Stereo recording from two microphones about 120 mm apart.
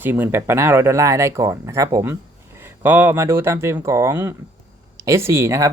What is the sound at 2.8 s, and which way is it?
Speech, 15° right (ahead or behind).